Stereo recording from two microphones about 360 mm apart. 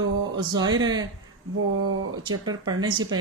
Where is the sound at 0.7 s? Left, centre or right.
Centre.